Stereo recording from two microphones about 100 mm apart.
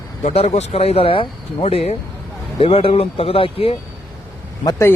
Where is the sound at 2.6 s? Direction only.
65° left (ahead or behind).